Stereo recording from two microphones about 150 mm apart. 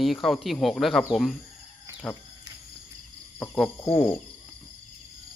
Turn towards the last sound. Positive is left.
turn(degrees=15)  # may be behind; listen again after turning